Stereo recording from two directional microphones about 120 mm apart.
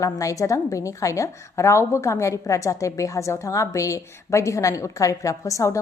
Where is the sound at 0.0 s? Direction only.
25° left (ahead or behind).